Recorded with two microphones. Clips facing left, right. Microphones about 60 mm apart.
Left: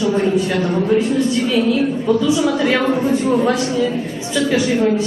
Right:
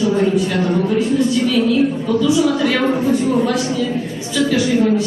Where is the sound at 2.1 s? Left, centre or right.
Left.